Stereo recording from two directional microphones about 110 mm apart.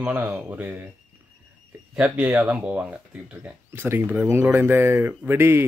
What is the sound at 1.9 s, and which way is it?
Speech, 10° right (ahead or behind).